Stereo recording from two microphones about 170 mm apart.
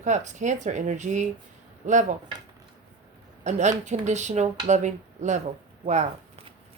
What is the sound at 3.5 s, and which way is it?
A woman's voice, 40° right (ahead or behind).